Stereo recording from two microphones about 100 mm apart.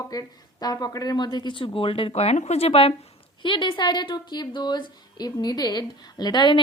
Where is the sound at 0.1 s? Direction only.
40° left (ahead or behind); by 2.9 s 80° left.